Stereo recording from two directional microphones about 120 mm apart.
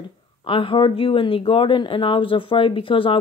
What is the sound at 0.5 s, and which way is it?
Speech, 45° left (ahead or behind).